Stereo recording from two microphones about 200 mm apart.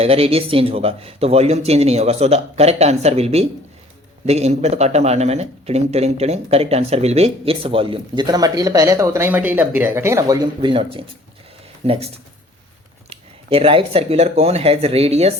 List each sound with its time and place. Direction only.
0.0 s speech: 30° right (ahead or behind)